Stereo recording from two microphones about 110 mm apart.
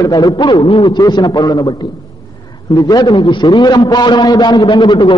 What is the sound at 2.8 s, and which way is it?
A man's voice, 35° left (ahead or behind).